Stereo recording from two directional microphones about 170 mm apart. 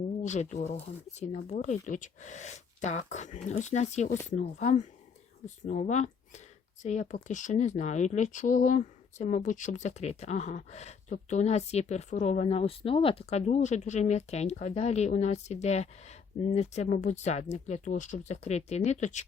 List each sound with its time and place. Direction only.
0.2 s speech: 45° left (ahead or behind)